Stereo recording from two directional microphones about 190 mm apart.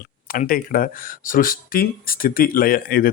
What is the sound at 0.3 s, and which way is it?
Speech, 50° left (ahead or behind).